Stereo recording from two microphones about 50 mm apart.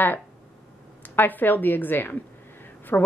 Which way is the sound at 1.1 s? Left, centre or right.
Left.